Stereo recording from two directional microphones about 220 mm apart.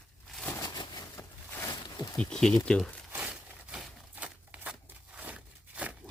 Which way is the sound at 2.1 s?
5° left (ahead or behind).